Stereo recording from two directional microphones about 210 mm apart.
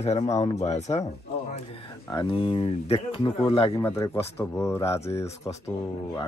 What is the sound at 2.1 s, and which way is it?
Speech, 20° left (ahead or behind).